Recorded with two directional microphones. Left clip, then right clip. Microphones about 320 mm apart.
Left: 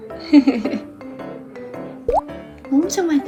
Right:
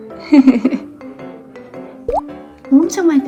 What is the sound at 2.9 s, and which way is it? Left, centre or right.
Music, centre.